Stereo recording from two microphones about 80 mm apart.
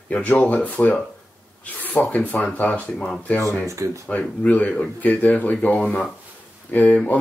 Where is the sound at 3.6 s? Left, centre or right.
Right.